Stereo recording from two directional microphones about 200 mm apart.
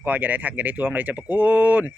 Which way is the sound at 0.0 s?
10° right (ahead or behind).